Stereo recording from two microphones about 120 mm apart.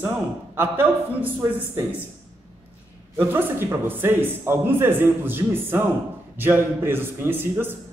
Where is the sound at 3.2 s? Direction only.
20° right (ahead or behind).